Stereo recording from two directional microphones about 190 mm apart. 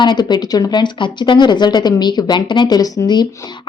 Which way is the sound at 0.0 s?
25° left (ahead or behind).